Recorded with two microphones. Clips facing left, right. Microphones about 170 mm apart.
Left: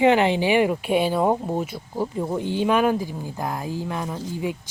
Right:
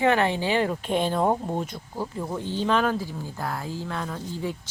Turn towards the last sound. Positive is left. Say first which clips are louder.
# left 3 dB
turn(degrees=15)  # may be behind; listen again after turning